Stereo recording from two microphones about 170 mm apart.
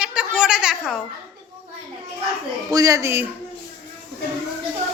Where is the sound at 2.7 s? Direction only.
20° right (ahead or behind).